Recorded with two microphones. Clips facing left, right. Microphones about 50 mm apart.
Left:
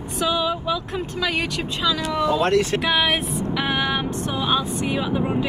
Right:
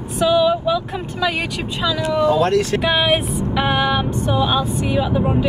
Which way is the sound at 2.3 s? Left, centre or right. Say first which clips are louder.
Right 3 dB; left.